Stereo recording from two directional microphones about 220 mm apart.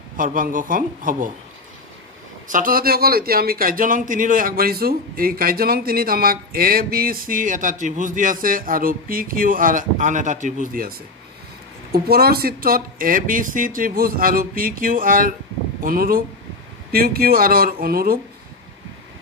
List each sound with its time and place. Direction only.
0.2 s a man's voice: 40° right (ahead or behind)
2.5 s a man's voice: 40° right (ahead or behind)